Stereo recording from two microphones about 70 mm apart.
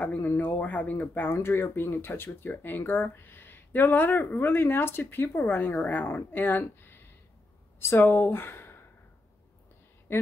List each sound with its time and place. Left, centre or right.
0.0 s speech: left
10.1 s speech: left